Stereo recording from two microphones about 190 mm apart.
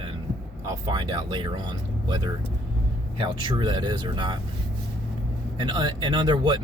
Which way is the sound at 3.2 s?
25° right (ahead or behind).